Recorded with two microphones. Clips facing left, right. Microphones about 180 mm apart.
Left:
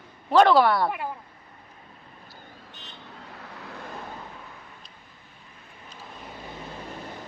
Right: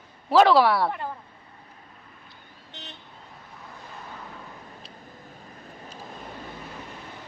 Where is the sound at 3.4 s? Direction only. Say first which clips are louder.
Left 5 dB; 80° left.